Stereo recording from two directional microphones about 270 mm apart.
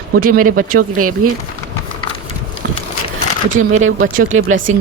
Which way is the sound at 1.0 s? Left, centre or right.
Right.